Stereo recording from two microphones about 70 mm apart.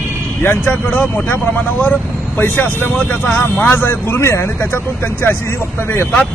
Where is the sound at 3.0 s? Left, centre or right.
Centre.